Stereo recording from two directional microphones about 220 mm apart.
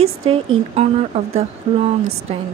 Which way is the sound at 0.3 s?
30° right (ahead or behind).